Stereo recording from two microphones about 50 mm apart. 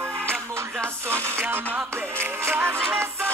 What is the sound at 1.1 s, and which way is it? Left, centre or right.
Music, right.